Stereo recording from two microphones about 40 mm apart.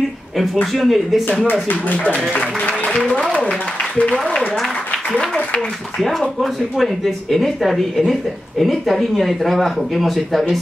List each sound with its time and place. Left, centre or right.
0.7 s speech: centre
1.5 s speech: left
2.3 s music: left
5.9 s speech: centre